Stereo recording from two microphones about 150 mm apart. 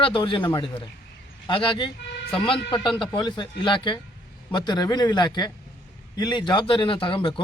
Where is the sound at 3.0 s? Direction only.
30° left (ahead or behind).